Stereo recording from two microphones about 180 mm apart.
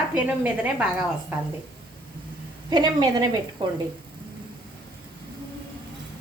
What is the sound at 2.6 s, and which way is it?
A woman's voice, 25° right (ahead or behind).